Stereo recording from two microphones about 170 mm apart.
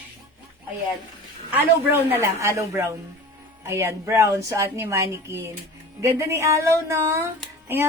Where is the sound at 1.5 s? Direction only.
15° right (ahead or behind).